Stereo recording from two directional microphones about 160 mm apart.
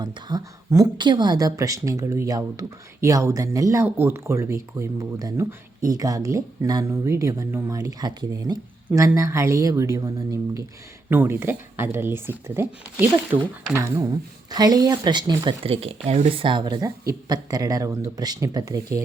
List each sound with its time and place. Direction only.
0.0 s a woman's voice: 25° right (ahead or behind)